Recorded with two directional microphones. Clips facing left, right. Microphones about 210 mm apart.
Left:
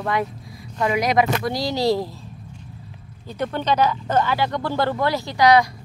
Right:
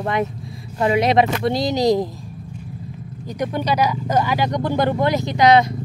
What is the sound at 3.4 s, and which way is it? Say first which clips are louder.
Speech: even; 10° right (ahead or behind).